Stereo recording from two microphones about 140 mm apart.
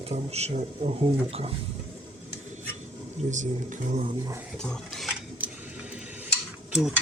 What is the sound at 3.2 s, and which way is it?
Speech, 60° right (ahead or behind).